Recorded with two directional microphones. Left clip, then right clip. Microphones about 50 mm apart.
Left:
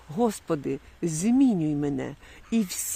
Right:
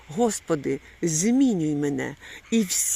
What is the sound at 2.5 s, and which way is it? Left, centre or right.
Speech, left.